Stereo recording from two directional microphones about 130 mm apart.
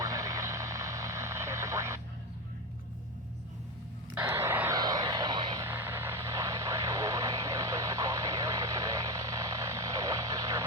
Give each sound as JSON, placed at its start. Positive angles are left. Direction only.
{"t": 0.0, "sound": "vehicle", "side_deg": -25}
{"t": 4.1, "sound": "a sound", "side_deg": -15}
{"t": 4.8, "sound": "vehicle", "side_deg": -30}
{"t": 5.6, "sound": "vehicle", "side_deg": -15}